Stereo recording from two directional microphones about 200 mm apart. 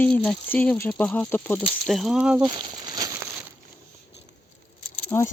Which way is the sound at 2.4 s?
25° right (ahead or behind).